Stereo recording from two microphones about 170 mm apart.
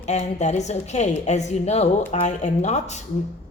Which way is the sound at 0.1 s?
45° left (ahead or behind).